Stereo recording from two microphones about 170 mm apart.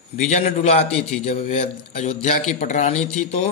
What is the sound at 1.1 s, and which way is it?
A man's voice, 40° left (ahead or behind).